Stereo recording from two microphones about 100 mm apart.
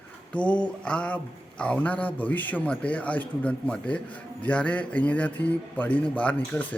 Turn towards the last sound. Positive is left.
turn(degrees=15)  # may be behind; listen again after turning